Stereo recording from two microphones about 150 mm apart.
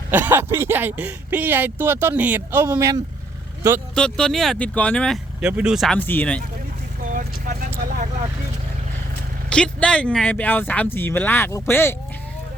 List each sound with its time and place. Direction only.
0.1 s speech: 15° right (ahead or behind)
2.7 s speech: 25° right (ahead or behind)
3.9 s speech: 5° left (ahead or behind)
6.1 s speech: 10° left (ahead or behind)
7.1 s vehicle: 65° right (ahead or behind)
9.5 s speech: 5° left (ahead or behind)